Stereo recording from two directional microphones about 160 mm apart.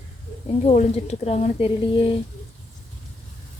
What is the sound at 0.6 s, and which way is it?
A woman's voice, 40° left (ahead or behind).